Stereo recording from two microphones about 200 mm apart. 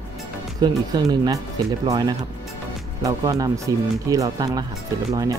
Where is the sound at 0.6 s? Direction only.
20° right (ahead or behind).